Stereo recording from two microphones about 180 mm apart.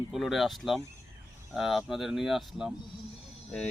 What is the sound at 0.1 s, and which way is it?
Speech, centre (ahead or behind).